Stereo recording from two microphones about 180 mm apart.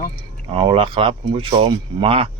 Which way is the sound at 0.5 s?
30° right (ahead or behind).